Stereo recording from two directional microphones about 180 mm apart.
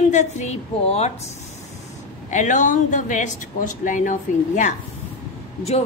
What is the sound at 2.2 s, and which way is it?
A woman's voice, 45° left (ahead or behind).